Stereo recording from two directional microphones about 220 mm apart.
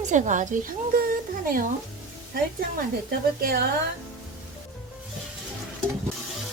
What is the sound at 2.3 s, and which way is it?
A woman's voice, 45° right (ahead or behind).